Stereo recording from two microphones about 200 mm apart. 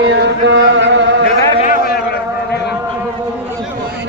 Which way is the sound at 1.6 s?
40° left (ahead or behind).